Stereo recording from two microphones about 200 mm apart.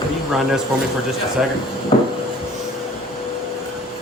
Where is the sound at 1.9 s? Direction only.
30° left (ahead or behind).